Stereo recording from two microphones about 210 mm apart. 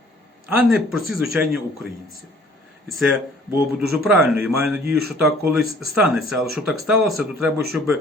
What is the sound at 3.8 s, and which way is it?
Speech, centre (ahead or behind).